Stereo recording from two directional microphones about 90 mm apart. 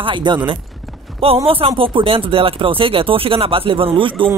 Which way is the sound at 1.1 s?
90° right.